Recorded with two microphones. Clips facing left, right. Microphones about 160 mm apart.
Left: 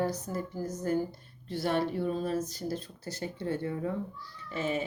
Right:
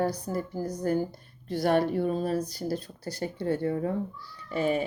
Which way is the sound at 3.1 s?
35° right (ahead or behind).